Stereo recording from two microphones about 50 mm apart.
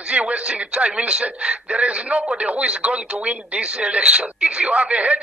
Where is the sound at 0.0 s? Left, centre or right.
Right.